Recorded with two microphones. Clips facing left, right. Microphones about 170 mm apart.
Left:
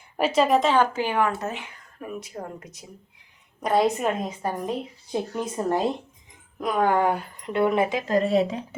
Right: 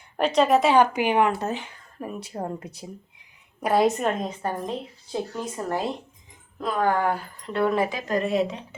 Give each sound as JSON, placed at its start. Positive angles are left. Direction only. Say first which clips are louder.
{"t": 0.2, "sound": "a woman's voice", "louder": "right 1 dB", "side_deg": 5}
{"t": 0.7, "sound": "speech", "louder": "right 3 dB", "side_deg": -15}
{"t": 1.4, "sound": "speech", "louder": "right 2 dB", "side_deg": -30}
{"t": 3.6, "sound": "a woman's voice", "louder": "right 1 dB", "side_deg": -5}
{"t": 4.0, "sound": "a woman's voice", "louder": "even", "side_deg": 10}